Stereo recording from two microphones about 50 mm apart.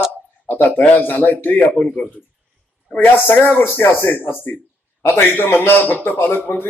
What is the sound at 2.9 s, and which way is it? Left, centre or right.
A man's voice, left.